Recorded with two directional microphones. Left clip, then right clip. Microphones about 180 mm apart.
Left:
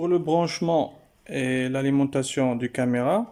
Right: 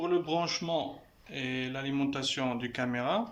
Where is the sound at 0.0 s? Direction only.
40° left (ahead or behind).